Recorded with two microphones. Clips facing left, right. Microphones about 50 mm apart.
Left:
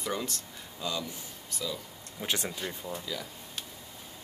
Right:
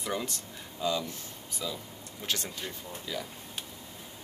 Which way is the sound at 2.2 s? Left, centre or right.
Centre.